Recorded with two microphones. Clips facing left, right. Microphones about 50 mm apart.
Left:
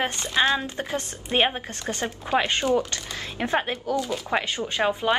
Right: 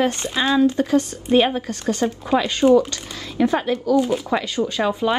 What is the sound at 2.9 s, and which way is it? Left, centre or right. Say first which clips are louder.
A woman's voice: right 1 dB; left.